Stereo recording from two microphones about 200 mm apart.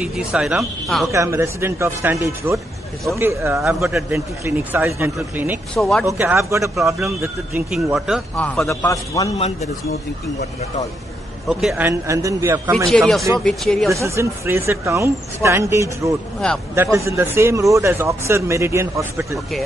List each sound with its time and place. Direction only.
0.0 s speech: 5° right (ahead or behind)
1.1 s speech: 15° right (ahead or behind); by 9.3 s 15° left (ahead or behind)
11.4 s speech: 5° right (ahead or behind)
12.7 s speech: centre (ahead or behind)
13.9 s speech: 15° right (ahead or behind)